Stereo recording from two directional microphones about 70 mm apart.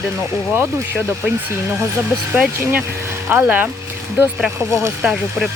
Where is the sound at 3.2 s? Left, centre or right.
Right.